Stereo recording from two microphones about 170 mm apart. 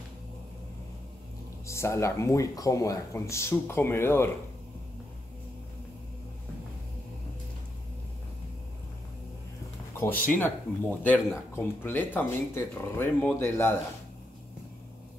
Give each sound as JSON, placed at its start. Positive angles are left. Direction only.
{"t": 1.7, "sound": "speech", "side_deg": 15}
{"t": 10.2, "sound": "speech", "side_deg": 10}